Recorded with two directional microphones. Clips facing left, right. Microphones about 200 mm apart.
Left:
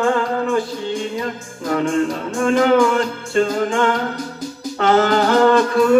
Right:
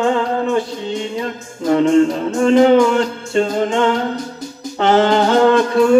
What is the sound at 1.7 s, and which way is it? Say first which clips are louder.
Music: right 6 dB; 25° right (ahead or behind).